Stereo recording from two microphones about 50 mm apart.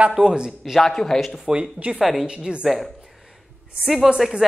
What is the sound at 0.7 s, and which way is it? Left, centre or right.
Speech, centre.